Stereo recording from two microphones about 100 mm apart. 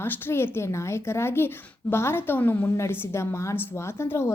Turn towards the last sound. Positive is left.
turn(degrees=25)  # may be behind; listen again after turning